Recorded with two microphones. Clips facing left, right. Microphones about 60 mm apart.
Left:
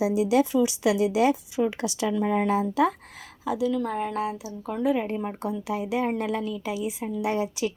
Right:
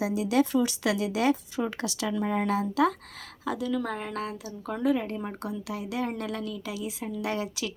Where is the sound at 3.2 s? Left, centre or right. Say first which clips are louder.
Left 5 dB; centre.